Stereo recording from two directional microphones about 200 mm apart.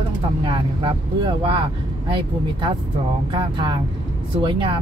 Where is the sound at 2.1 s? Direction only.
25° right (ahead or behind).